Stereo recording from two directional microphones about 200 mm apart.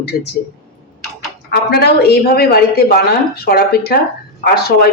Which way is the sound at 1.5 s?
50° left (ahead or behind).